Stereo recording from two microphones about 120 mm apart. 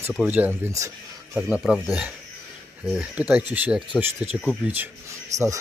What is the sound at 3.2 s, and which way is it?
Speech, 10° right (ahead or behind).